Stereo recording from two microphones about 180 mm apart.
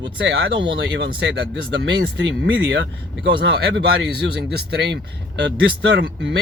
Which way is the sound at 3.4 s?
75° right (ahead or behind).